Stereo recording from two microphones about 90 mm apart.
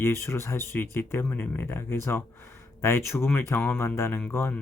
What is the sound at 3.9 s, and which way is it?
Speech, 30° left (ahead or behind).